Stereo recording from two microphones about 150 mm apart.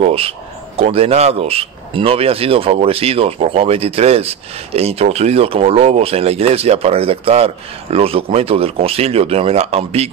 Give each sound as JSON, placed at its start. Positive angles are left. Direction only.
{"t": 0.0, "sound": "speech", "side_deg": -40}